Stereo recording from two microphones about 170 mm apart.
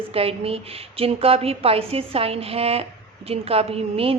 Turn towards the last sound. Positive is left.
turn(degrees=-35)  # may be behind; listen again after turning